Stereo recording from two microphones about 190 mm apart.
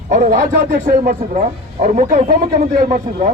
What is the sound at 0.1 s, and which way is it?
A man's voice, 45° right (ahead or behind).